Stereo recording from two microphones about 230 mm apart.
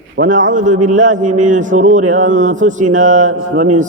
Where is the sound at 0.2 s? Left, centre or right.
Right.